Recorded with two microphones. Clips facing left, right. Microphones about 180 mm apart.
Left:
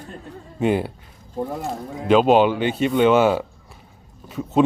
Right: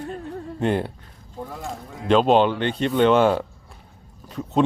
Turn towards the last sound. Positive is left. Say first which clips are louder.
# left 3 dB
turn(degrees=5)  # may be behind; listen again after turning